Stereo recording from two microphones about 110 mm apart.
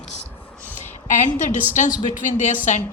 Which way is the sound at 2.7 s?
90° left.